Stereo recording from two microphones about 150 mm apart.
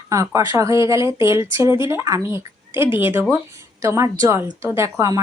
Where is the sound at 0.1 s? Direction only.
20° right (ahead or behind).